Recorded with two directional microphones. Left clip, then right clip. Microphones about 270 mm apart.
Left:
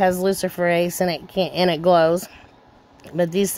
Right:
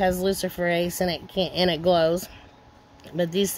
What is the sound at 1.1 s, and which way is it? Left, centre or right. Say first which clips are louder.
Speech: left 4 dB; left.